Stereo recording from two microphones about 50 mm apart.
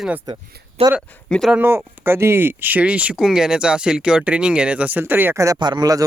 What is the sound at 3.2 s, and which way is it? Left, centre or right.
Speech, centre.